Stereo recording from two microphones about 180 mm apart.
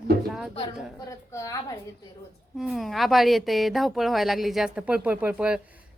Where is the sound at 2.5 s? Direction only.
Centre (ahead or behind).